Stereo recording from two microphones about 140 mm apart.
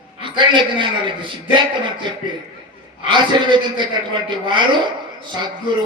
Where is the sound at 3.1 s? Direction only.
35° right (ahead or behind).